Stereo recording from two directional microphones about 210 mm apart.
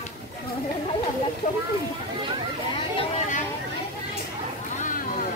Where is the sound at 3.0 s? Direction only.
35° left (ahead or behind).